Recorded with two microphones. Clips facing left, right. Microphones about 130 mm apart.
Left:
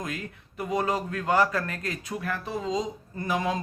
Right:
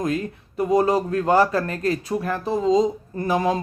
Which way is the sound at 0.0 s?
35° right (ahead or behind).